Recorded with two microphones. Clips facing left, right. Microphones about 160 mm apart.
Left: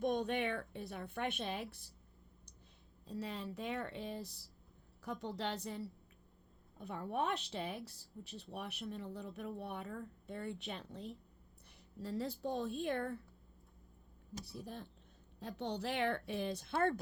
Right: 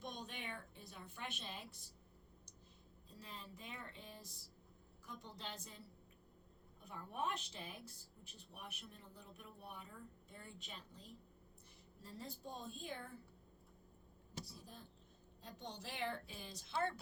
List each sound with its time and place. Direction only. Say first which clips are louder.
0.0 s speech: left 14 dB; 60° left (ahead or behind)
3.1 s speech: left 12 dB; 75° left (ahead or behind)
12.0 s speech: left 12 dB; 75° left (ahead or behind)
14.4 s speech: left 10 dB; 70° left (ahead or behind)